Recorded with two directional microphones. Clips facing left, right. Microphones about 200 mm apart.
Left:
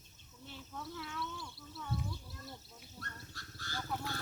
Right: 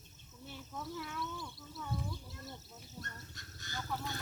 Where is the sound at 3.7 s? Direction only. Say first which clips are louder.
Even; 10° left (ahead or behind).